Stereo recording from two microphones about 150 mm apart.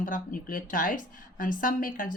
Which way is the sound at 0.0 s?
65° left (ahead or behind).